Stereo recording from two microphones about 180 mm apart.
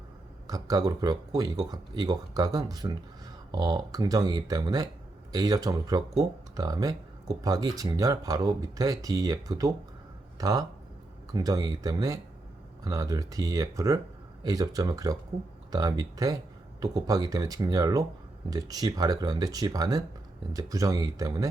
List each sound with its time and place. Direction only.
0.4 s speech: 20° right (ahead or behind)